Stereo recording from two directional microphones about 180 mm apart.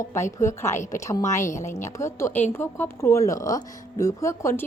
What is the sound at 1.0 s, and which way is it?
A woman's voice, 15° left (ahead or behind).